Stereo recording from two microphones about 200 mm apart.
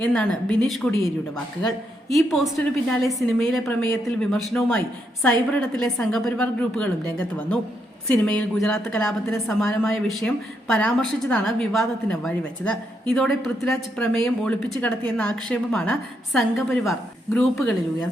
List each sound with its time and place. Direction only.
0.0 s a woman's voice: 5° left (ahead or behind)